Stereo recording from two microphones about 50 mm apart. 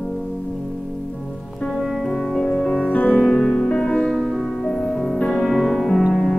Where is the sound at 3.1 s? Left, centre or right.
Centre.